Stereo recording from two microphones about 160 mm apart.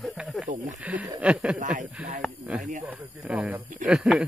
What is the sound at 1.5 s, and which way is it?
Speech, 55° right (ahead or behind).